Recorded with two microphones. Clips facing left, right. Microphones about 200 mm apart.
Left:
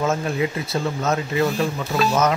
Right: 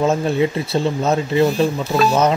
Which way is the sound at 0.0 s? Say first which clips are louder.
Right 5 dB; 30° right (ahead or behind).